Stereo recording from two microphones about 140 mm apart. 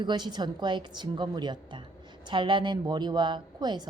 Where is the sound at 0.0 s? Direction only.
30° right (ahead or behind).